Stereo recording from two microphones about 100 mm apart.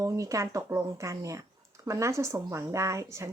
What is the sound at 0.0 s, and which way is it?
A woman's voice, 35° right (ahead or behind).